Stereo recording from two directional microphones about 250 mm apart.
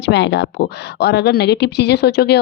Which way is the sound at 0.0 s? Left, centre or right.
Left.